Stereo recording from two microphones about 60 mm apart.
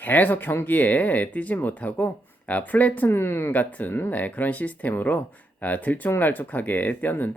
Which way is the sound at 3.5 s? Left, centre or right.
Left.